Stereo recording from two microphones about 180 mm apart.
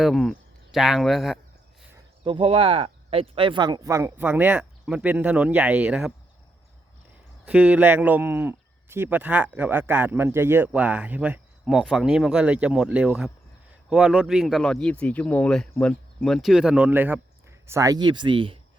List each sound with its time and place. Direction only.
0.0 s speech: centre (ahead or behind)
2.2 s speech: 30° right (ahead or behind); by 6.1 s 5° right (ahead or behind)
7.4 s speech: 5° right (ahead or behind); by 18.6 s 30° right (ahead or behind)